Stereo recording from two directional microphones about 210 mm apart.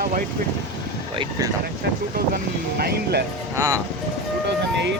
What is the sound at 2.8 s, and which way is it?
Speech, 50° right (ahead or behind).